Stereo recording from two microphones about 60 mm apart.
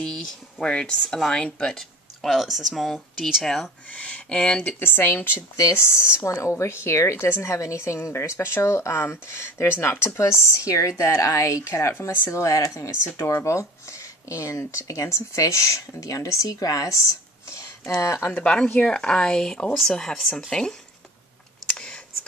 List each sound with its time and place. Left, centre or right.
0.0 s speech: centre
2.2 s speech: centre
3.9 s speech: centre
4.6 s speech: left
5.6 s speech: left
13.0 s speech: left
17.9 s speech: left
18.4 s speech: centre
21.6 s a sound: centre